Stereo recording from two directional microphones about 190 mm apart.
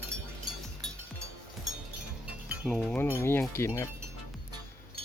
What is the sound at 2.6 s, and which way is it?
Speech, 5° left (ahead or behind).